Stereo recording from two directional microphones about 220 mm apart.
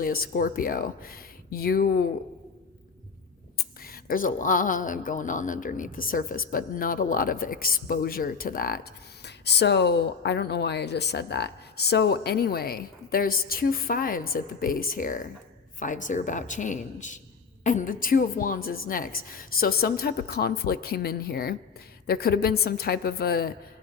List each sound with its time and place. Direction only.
0.0 s speech: 40° left (ahead or behind)
3.6 s a woman's voice: 40° left (ahead or behind)